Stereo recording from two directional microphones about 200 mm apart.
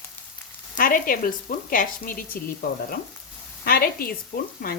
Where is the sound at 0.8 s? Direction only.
45° left (ahead or behind).